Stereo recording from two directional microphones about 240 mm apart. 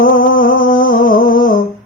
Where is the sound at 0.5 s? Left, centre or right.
Left.